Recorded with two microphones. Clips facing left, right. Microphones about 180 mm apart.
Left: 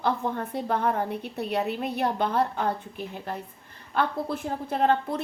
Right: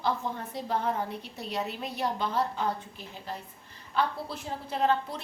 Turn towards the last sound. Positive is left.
turn(degrees=55)  # may be behind; listen again after turning